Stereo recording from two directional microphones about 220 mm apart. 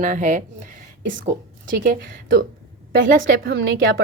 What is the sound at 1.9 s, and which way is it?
A woman's voice, 40° right (ahead or behind).